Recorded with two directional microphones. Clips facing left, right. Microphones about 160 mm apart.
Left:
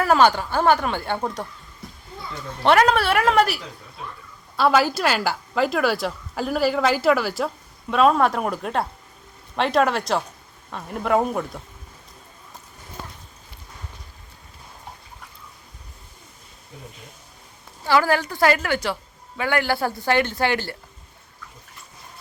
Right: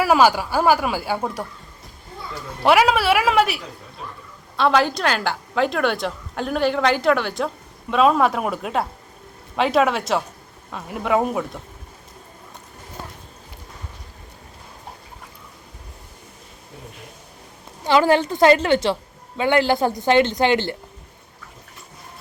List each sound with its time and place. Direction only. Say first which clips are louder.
0.0 s speech: right 1 dB; 10° right (ahead or behind)
2.6 s a woman's voice: right 1 dB; 5° right (ahead or behind)
17.8 s speech: right 3 dB; 20° right (ahead or behind)